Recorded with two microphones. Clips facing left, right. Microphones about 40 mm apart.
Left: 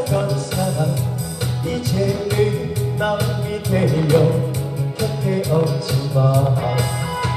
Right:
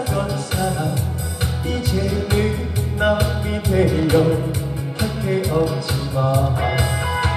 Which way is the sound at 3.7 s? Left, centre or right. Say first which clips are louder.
Right 2 dB; left.